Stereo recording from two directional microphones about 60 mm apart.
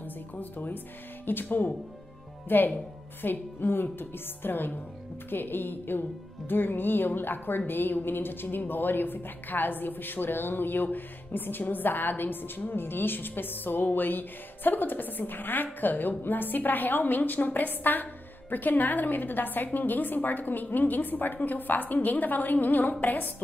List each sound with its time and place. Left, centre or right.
0.4 s a woman's voice: left